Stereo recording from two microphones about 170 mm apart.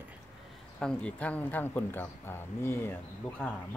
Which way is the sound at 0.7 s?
5° left (ahead or behind).